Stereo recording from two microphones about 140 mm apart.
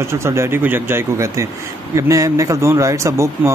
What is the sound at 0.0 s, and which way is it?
Speech, 20° right (ahead or behind).